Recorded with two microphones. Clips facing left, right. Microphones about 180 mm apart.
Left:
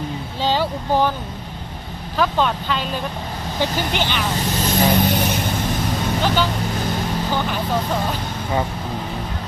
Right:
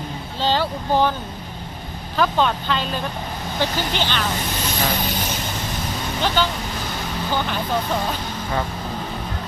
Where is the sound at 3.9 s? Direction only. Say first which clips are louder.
Left 1 dB; 15° left (ahead or behind).